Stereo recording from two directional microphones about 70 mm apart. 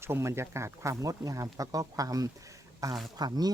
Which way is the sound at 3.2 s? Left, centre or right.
Right.